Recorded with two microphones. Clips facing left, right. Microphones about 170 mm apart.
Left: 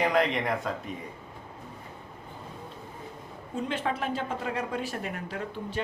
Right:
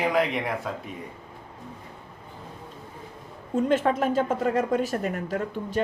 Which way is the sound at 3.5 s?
45° right (ahead or behind).